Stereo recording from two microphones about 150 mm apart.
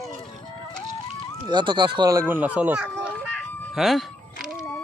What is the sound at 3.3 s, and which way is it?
Music, centre (ahead or behind).